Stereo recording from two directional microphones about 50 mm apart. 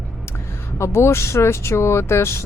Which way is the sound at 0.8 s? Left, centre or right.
Left.